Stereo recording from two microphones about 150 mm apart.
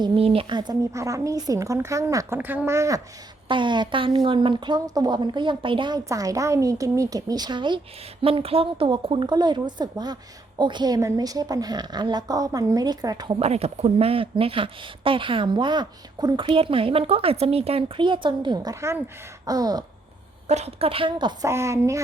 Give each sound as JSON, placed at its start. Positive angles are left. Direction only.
{"t": 0.0, "sound": "speech", "side_deg": -35}
{"t": 3.5, "sound": "a woman's voice", "side_deg": -30}
{"t": 6.1, "sound": "a woman's voice", "side_deg": -25}
{"t": 13.4, "sound": "a woman's voice", "side_deg": -45}
{"t": 20.5, "sound": "a woman's voice", "side_deg": -45}
{"t": 21.4, "sound": "speech", "side_deg": -20}